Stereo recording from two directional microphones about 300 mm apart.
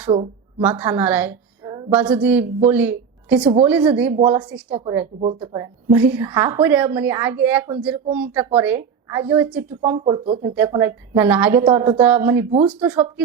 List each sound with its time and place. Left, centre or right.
0.6 s a woman's voice: centre
4.1 s a woman's voice: centre
9.8 s speech: centre
10.5 s a woman's voice: centre
12.6 s speech: centre